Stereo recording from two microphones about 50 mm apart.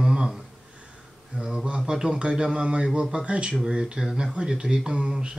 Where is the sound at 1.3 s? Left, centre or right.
Centre.